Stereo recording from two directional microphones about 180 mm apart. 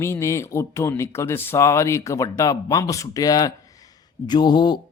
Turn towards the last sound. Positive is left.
turn(degrees=25)  # may be behind; listen again after turning